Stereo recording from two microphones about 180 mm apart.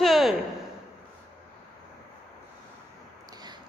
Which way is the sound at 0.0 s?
Centre (ahead or behind).